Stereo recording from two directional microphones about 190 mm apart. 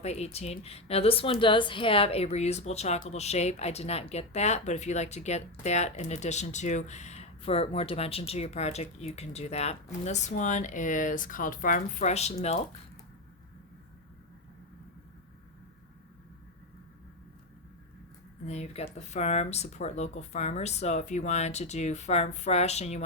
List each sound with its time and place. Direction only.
0.0 s speech: 35° left (ahead or behind)
18.4 s speech: 35° left (ahead or behind)